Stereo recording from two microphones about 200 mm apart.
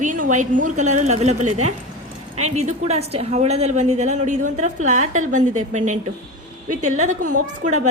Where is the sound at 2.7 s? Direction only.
30° right (ahead or behind).